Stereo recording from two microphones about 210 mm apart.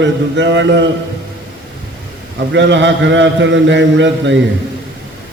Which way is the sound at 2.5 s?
60° right (ahead or behind).